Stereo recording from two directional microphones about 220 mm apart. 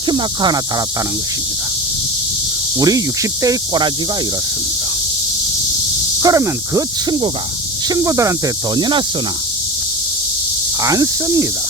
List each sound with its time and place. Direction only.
0.1 s speech: 20° right (ahead or behind)
2.7 s cricket: 15° right (ahead or behind)
6.2 s cricket: 15° right (ahead or behind)
10.8 s cricket: 15° right (ahead or behind)